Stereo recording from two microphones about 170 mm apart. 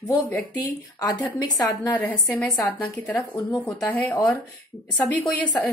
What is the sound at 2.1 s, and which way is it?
Speech, 5° left (ahead or behind).